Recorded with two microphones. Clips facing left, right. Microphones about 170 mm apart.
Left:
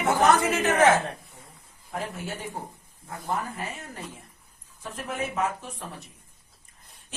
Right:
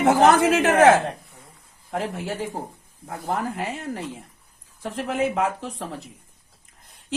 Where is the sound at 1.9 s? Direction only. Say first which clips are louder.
Right 5 dB; 90° right.